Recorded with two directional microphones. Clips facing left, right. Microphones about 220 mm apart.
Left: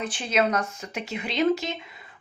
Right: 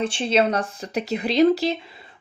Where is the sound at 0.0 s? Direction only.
30° right (ahead or behind).